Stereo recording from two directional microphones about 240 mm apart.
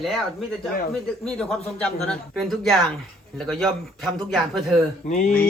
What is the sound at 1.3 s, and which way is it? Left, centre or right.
Speech, centre.